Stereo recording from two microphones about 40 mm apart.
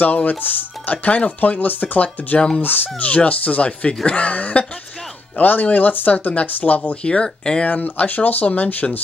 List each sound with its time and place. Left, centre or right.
0.0 s speech: left
7.6 s speech: left